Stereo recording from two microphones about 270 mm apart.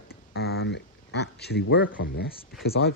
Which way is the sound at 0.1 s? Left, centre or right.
Left.